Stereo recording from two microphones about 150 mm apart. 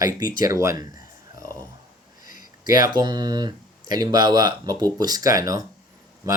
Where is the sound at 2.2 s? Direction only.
65° left (ahead or behind).